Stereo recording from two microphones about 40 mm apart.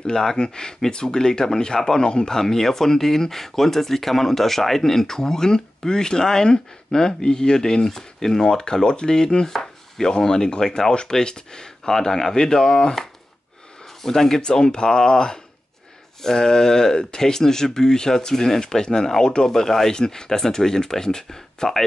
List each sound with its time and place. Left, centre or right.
0.0 s speech: centre
2.3 s speech: centre